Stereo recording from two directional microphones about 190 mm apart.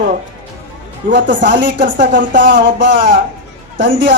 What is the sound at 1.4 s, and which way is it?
Speech, 70° right (ahead or behind).